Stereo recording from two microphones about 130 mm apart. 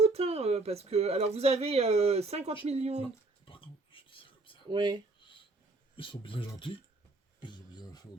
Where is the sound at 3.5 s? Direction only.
40° left (ahead or behind).